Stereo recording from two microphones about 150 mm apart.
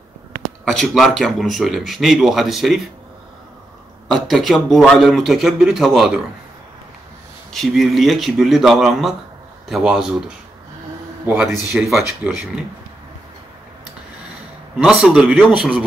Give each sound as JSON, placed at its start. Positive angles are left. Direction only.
{"t": 0.7, "sound": "speech", "side_deg": 0}
{"t": 4.1, "sound": "speech", "side_deg": 0}
{"t": 7.5, "sound": "speech", "side_deg": 0}
{"t": 14.8, "sound": "a man's voice", "side_deg": -5}